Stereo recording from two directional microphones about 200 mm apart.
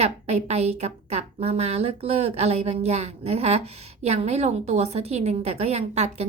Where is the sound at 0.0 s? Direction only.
35° right (ahead or behind).